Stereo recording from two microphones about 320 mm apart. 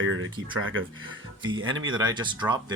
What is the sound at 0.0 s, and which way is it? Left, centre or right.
Speech, right.